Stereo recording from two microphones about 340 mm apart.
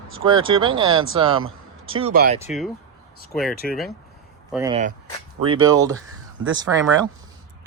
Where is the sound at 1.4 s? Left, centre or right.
Right.